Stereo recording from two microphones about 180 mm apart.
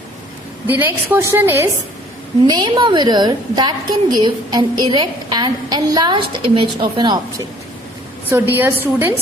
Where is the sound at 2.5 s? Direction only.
25° right (ahead or behind).